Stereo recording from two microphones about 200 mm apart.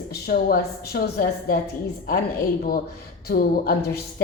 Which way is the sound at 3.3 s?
50° left (ahead or behind).